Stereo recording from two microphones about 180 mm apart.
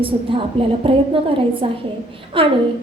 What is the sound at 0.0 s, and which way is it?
A woman's voice, 30° right (ahead or behind).